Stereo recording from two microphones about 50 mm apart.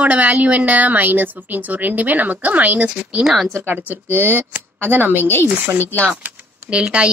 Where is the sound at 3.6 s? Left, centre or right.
Right.